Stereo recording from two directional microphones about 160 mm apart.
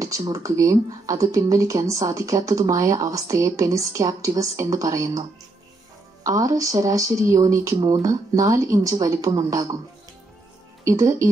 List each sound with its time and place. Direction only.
0.0 s speech: 20° right (ahead or behind)
6.2 s speech: 20° right (ahead or behind)
10.8 s speech: 20° right (ahead or behind)